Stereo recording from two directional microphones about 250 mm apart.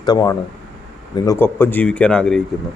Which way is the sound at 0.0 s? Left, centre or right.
Centre.